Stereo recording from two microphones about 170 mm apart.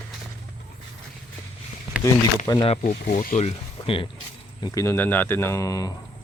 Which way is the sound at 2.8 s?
60° left (ahead or behind).